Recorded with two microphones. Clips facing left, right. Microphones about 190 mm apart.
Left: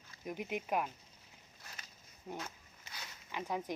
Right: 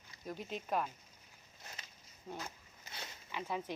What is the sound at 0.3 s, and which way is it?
Speech, 15° left (ahead or behind).